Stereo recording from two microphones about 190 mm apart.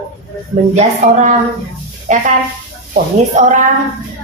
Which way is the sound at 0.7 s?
40° right (ahead or behind).